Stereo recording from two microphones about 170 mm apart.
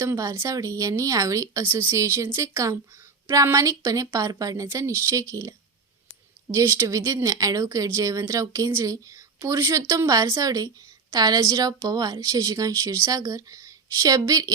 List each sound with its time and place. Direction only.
0.0 s speech: 20° right (ahead or behind)